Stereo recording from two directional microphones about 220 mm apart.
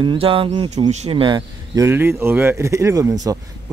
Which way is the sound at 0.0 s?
25° right (ahead or behind).